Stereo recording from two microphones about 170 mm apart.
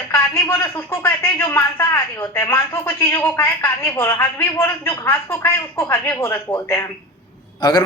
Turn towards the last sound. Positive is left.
turn(degrees=25)  # may be behind; listen again after turning